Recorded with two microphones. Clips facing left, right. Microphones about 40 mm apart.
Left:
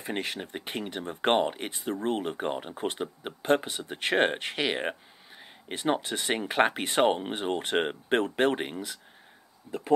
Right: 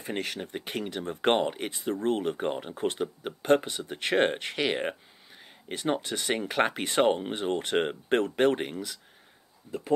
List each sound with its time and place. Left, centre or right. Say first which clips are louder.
0.0 s speech: even; centre
1.2 s speech: even; centre; by 9.0 s left